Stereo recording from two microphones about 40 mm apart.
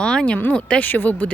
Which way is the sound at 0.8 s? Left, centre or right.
Left.